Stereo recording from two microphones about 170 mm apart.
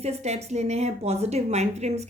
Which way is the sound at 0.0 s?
40° right (ahead or behind).